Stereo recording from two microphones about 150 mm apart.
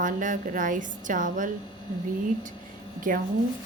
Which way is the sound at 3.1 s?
65° right (ahead or behind).